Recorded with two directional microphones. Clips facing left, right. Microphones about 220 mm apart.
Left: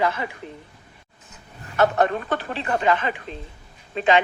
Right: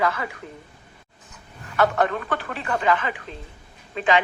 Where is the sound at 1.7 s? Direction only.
25° left (ahead or behind).